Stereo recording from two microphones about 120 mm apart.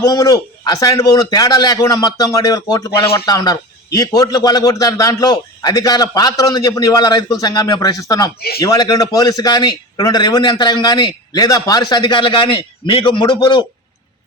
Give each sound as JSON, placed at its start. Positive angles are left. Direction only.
{"t": 0.0, "sound": "speech", "side_deg": 30}